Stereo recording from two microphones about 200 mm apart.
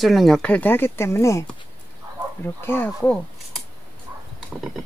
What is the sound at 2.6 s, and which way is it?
Speech, 10° left (ahead or behind).